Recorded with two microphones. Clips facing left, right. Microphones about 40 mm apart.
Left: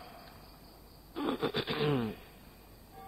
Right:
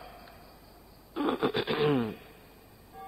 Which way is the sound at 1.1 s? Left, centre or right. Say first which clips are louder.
Right 5 dB; right.